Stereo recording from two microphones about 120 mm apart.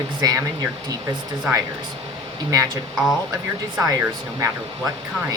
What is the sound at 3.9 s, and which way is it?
Speech, 25° right (ahead or behind).